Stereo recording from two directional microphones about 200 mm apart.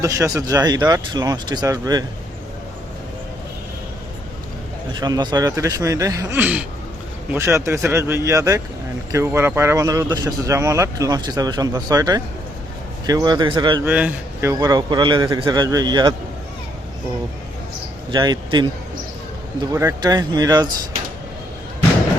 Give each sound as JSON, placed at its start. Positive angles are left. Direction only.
{"t": 0.0, "sound": "speech", "side_deg": -15}
{"t": 4.9, "sound": "a man's voice", "side_deg": -20}
{"t": 13.8, "sound": "a man's voice", "side_deg": -10}
{"t": 14.6, "sound": "a man's voice", "side_deg": -20}
{"t": 18.1, "sound": "a man's voice", "side_deg": -20}